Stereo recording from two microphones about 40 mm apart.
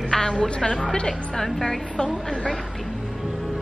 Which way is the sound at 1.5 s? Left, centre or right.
Centre.